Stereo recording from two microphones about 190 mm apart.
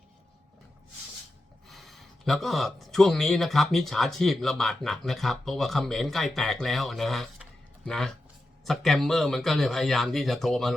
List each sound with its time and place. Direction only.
1.6 s speech: centre (ahead or behind)